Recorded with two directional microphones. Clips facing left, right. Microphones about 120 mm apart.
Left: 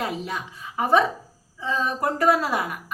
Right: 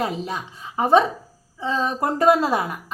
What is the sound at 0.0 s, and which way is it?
A woman's voice, 25° right (ahead or behind).